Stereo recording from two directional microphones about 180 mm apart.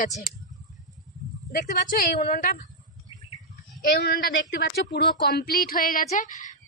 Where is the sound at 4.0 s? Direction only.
55° left (ahead or behind).